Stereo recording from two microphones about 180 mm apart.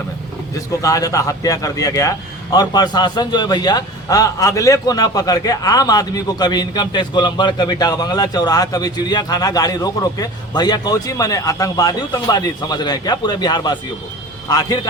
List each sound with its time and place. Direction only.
0.7 s a man's voice: 20° left (ahead or behind)